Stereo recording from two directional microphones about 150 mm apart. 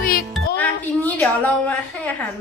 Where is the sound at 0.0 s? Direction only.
75° left (ahead or behind).